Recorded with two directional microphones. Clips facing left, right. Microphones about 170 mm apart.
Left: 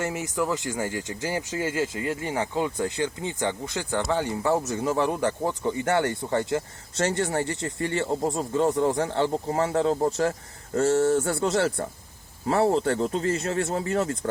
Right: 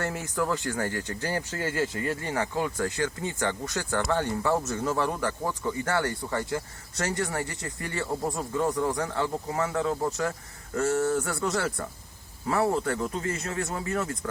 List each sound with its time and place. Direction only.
0.0 s speech: 15° left (ahead or behind); by 14.3 s 30° left (ahead or behind)